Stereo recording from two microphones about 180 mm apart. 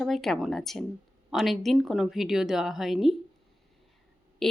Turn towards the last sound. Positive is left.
turn(degrees=0)  # may be behind; listen again after turning